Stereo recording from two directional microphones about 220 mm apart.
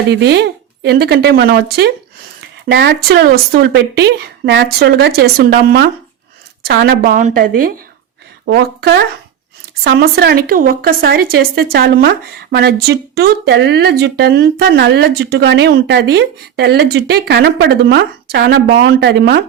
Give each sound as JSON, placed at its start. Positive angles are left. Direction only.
{"t": 0.1, "sound": "a woman's voice", "side_deg": -50}